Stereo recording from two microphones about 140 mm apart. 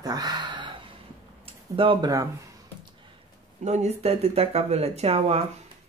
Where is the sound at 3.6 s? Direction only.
50° right (ahead or behind).